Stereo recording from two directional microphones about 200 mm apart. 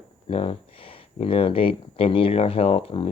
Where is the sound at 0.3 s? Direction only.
30° left (ahead or behind).